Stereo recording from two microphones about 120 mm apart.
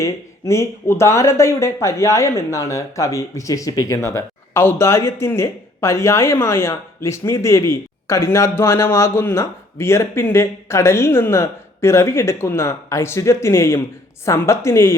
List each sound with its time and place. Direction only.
0.0 s speech: 25° left (ahead or behind)